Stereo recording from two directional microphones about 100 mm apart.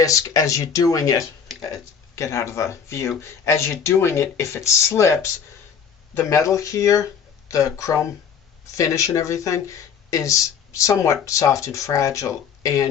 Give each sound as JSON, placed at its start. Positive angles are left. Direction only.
{"t": 0.0, "sound": "speech", "side_deg": 35}